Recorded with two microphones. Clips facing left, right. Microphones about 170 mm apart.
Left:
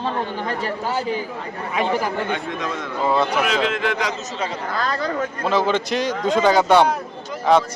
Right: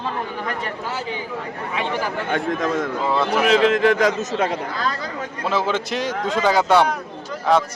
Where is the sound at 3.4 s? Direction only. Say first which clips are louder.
Right 6 dB; 40° right (ahead or behind); by 4.5 s 55° right (ahead or behind).